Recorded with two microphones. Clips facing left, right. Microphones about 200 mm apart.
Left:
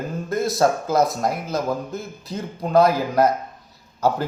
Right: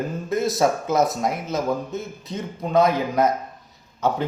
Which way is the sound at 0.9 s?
20° right (ahead or behind).